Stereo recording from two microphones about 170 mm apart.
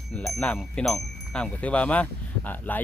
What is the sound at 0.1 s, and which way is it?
Speech, 5° left (ahead or behind).